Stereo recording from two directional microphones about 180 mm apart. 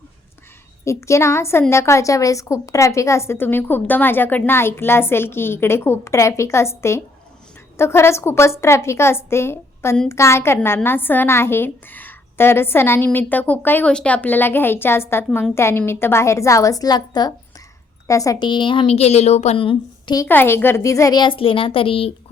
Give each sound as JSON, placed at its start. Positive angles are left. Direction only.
{"t": 0.9, "sound": "a woman's voice", "side_deg": 15}
{"t": 20.2, "sound": "a woman's voice", "side_deg": 10}